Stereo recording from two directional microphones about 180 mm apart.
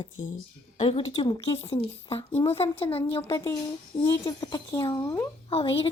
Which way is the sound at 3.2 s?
15° left (ahead or behind).